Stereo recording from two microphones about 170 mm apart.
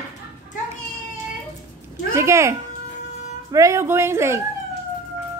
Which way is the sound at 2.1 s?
15° right (ahead or behind).